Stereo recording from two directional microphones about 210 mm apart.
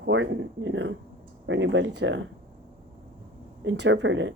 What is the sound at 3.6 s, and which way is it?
Speech, 60° right (ahead or behind).